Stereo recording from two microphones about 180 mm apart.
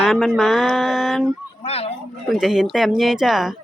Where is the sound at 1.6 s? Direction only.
35° left (ahead or behind).